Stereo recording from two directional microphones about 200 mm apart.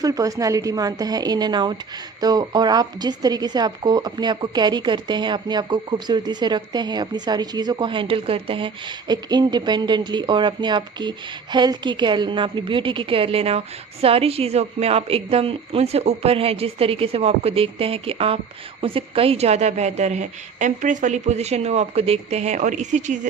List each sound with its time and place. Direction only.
0.0 s a woman's voice: 15° right (ahead or behind); by 23.3 s 40° right (ahead or behind)